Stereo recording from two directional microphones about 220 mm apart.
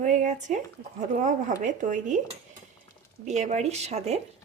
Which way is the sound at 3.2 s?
30° right (ahead or behind).